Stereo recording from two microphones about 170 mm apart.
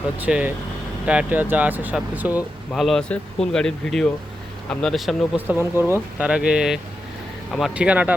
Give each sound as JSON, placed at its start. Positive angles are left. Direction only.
{"t": 0.2, "sound": "speech", "side_deg": -10}
{"t": 5.5, "sound": "speech", "side_deg": -15}